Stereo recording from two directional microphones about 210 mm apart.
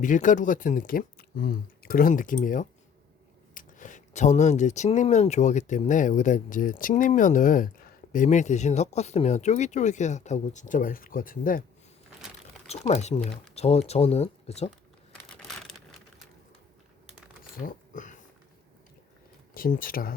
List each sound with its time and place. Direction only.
0.0 s speech: 40° left (ahead or behind)
12.6 s speech: 30° left (ahead or behind)
13.2 s speech: centre (ahead or behind)
13.6 s speech: 30° left (ahead or behind)
15.1 s a sound: 5° left (ahead or behind)
17.7 s a sound: 35° left (ahead or behind)
19.5 s speech: 40° left (ahead or behind)